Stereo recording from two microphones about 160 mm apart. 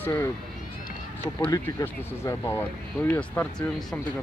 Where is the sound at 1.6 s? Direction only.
15° left (ahead or behind).